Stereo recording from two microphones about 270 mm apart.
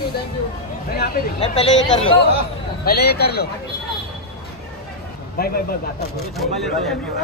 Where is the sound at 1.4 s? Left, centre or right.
Left.